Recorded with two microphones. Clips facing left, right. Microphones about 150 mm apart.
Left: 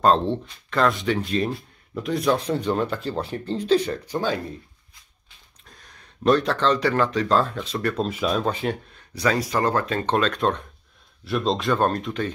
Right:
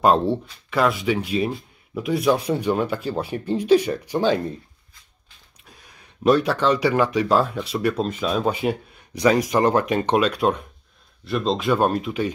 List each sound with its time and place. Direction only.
0.0 s speech: 10° right (ahead or behind)
4.1 s speech: 20° right (ahead or behind)
5.7 s speech: 5° right (ahead or behind)